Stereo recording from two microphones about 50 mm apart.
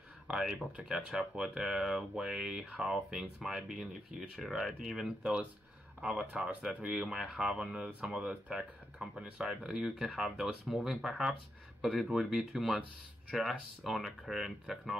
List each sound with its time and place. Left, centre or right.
0.3 s speech: centre
7.9 s speech: right; by 15.0 s centre